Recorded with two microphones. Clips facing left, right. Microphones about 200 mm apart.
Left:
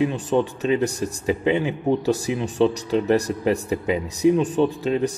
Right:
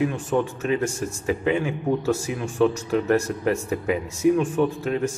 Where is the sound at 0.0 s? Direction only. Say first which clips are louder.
Left 2 dB; 20° left (ahead or behind).